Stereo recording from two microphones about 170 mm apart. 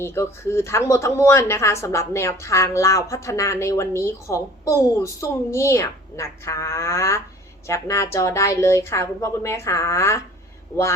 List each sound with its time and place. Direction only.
0.0 s speech: 15° left (ahead or behind)